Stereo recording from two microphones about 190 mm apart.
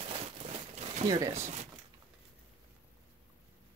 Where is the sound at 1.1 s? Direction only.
20° right (ahead or behind).